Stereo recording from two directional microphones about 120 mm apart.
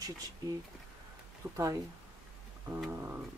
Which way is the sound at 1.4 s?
25° right (ahead or behind).